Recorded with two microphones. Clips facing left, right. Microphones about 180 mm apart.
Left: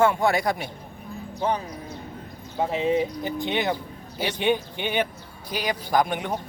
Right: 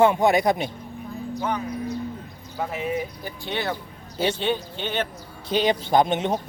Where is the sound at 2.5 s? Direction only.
25° left (ahead or behind).